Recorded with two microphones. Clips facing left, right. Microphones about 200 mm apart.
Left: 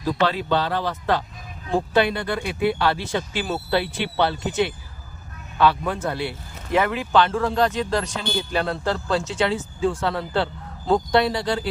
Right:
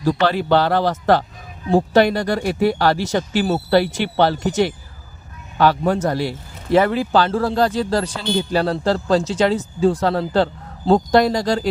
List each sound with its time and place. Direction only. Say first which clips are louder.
0.0 s speech: right 4 dB; 80° right
2.1 s speech: right 6 dB; 40° right (ahead or behind)